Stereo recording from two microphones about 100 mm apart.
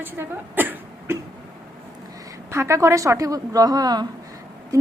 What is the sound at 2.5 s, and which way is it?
A woman's voice, 30° right (ahead or behind).